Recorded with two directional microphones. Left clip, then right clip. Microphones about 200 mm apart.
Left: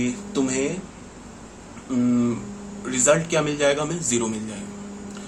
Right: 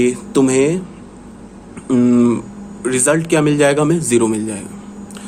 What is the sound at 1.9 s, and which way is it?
A man's voice, 60° right (ahead or behind).